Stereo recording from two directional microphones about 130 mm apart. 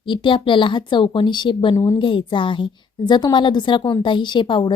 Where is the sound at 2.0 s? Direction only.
40° left (ahead or behind).